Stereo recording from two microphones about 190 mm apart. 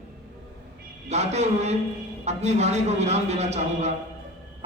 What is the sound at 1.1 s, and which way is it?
A man's voice, 35° right (ahead or behind).